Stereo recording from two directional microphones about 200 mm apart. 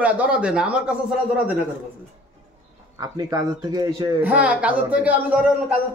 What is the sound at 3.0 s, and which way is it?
Speech, 20° right (ahead or behind).